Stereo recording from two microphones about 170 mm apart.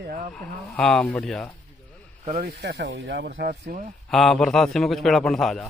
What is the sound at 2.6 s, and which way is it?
Speech, 90° right.